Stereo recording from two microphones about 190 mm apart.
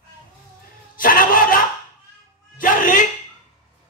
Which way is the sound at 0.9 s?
45° left (ahead or behind).